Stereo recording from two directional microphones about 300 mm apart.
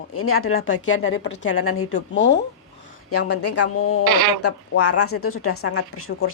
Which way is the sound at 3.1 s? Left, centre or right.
Left.